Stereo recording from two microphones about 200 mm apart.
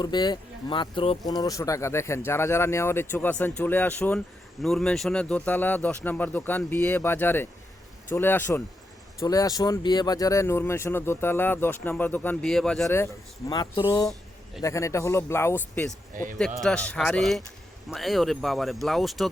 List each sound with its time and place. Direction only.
0.0 s speech: 20° left (ahead or behind)
13.5 s speech: 20° left (ahead or behind)
16.1 s a man's voice: 45° right (ahead or behind)
16.6 s speech: 5° left (ahead or behind)